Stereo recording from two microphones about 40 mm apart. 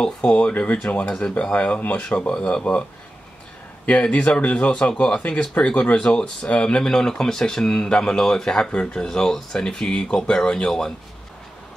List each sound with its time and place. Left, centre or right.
0.0 s speech: left
0.4 s speech: left
2.0 s speech: left
3.8 s speech: left
6.8 s speech: centre